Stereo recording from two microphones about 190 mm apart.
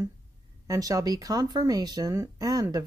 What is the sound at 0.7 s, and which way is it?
Speech, 20° right (ahead or behind).